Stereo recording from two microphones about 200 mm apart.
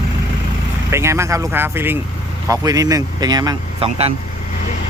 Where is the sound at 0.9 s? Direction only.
15° right (ahead or behind).